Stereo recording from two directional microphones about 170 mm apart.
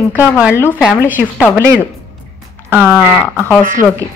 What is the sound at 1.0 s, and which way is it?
Speech, 10° right (ahead or behind).